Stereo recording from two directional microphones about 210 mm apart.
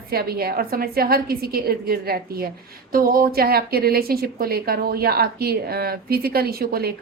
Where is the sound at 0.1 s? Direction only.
45° right (ahead or behind).